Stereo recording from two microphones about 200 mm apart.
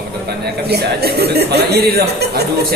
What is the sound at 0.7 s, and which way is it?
Speech, 55° right (ahead or behind).